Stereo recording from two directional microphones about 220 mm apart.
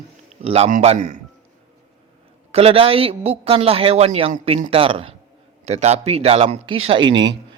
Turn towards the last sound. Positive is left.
turn(degrees=-20)  # may be behind; listen again after turning